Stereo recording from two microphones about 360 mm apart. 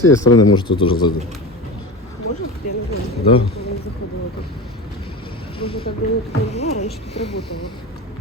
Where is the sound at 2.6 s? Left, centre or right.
Left.